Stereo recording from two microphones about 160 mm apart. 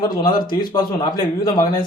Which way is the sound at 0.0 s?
25° left (ahead or behind).